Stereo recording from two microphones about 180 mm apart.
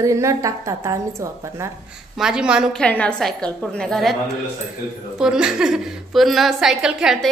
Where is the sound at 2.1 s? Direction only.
5° right (ahead or behind).